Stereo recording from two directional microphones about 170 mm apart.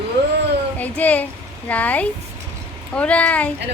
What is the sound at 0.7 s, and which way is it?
Speech, 10° left (ahead or behind).